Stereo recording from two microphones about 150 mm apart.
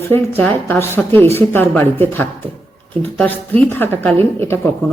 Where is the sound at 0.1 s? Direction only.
10° left (ahead or behind).